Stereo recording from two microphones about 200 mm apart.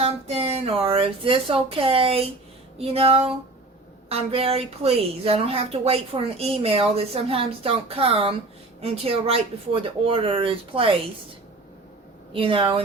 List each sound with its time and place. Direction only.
0.0 s speech: 30° right (ahead or behind)
2.7 s a sound: 30° right (ahead or behind)
4.1 s speech: 30° right (ahead or behind)
12.3 s speech: 25° right (ahead or behind)